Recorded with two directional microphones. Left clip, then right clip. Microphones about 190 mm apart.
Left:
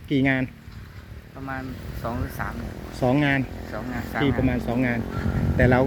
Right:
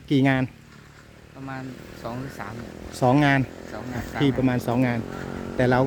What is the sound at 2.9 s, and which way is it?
Speech, 25° right (ahead or behind).